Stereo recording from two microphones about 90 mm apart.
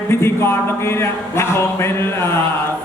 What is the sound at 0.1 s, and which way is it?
A man's voice, 30° left (ahead or behind).